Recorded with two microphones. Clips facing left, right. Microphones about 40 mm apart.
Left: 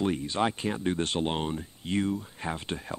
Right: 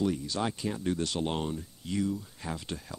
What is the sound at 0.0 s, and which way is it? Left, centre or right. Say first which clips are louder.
Speech: left 3 dB; left.